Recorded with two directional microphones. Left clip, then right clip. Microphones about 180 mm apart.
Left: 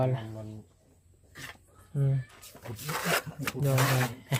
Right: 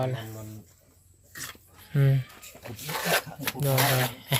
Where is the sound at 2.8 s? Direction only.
40° left (ahead or behind).